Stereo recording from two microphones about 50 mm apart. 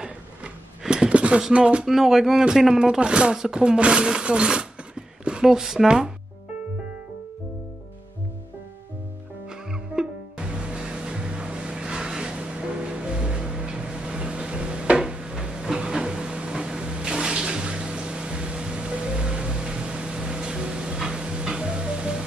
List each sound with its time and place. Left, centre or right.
0.0 s a sound: centre
1.5 s speech: right
1.9 s speech: centre
9.5 s music: centre